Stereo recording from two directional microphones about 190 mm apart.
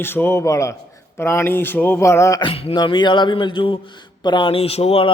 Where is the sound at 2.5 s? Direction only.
30° left (ahead or behind).